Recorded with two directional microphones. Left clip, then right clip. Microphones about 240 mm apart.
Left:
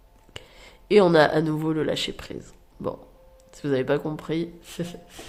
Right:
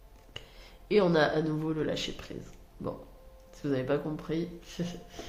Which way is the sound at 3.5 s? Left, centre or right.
Left.